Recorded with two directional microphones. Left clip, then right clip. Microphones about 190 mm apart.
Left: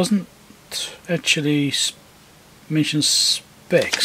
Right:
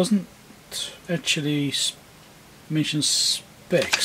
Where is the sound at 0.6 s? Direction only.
15° left (ahead or behind).